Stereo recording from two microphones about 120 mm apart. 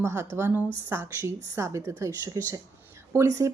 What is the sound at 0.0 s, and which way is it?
A woman's voice, 20° right (ahead or behind).